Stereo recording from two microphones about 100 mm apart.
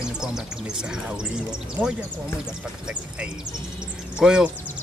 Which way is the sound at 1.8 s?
20° right (ahead or behind).